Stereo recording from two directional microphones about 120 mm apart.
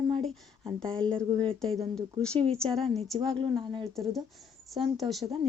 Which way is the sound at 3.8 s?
Centre (ahead or behind).